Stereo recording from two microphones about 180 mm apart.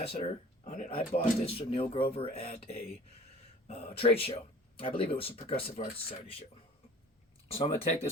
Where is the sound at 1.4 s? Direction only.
30° left (ahead or behind).